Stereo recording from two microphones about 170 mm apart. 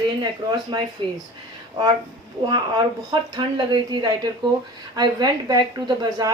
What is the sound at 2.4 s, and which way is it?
A woman's voice, 25° right (ahead or behind).